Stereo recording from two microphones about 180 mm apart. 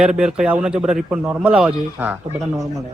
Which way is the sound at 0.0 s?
5° right (ahead or behind).